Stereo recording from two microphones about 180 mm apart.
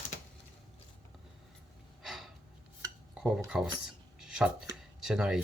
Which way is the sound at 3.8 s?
5° right (ahead or behind).